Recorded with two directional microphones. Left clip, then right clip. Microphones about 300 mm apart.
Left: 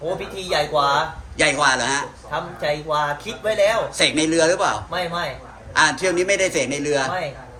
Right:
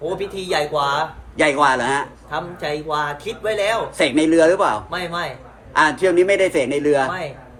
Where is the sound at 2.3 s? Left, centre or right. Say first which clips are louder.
Left 1 dB; centre.